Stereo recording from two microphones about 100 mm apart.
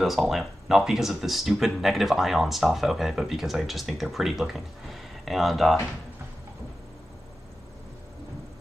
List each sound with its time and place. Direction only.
0.0 s speech: centre (ahead or behind)